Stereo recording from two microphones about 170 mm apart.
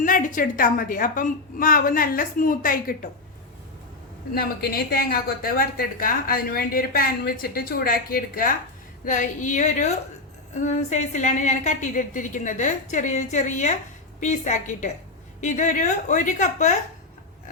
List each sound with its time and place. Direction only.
0.0 s a woman's voice: 50° left (ahead or behind)
4.4 s a woman's voice: 65° left (ahead or behind); by 16.7 s 45° left (ahead or behind)